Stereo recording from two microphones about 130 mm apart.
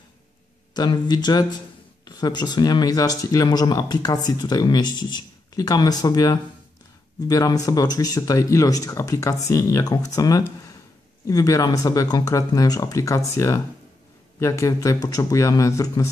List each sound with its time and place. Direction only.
0.7 s speech: 30° left (ahead or behind)